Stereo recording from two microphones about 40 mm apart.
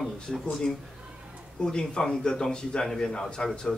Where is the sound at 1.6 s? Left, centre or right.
Centre.